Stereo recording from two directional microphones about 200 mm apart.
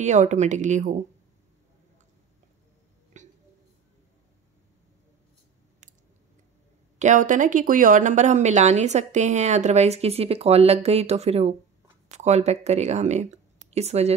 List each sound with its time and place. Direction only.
0.0 s speech: 35° right (ahead or behind)
3.1 s a sound: 35° right (ahead or behind)
7.0 s speech: 40° right (ahead or behind)